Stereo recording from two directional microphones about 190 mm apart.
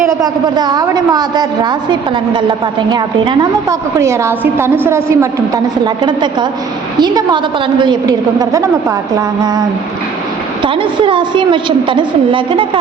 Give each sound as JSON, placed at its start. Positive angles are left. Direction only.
{"t": 0.2, "sound": "a woman's voice", "side_deg": -20}
{"t": 10.6, "sound": "a woman's voice", "side_deg": -25}